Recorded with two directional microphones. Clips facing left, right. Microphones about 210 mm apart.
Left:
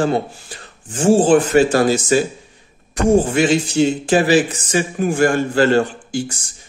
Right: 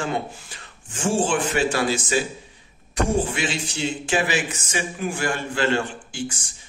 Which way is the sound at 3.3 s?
45° left (ahead or behind).